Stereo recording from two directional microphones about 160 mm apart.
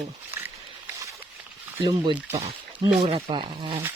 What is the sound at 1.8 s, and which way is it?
Speech, 25° right (ahead or behind).